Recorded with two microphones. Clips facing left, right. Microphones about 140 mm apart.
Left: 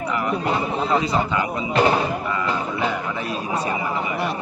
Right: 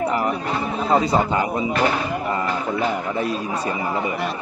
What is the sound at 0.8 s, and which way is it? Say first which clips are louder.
Speech: right 5 dB; 40° right (ahead or behind).